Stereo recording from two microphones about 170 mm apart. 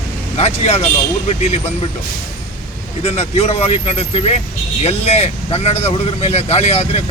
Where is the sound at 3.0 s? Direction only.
35° left (ahead or behind).